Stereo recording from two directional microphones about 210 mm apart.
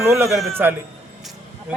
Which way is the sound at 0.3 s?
Centre (ahead or behind).